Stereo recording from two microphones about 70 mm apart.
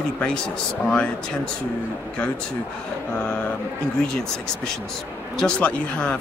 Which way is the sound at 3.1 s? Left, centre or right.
Centre.